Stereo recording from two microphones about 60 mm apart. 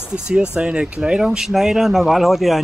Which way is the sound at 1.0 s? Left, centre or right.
Centre.